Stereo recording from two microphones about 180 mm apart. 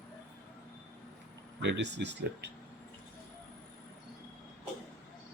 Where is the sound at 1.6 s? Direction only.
75° right (ahead or behind).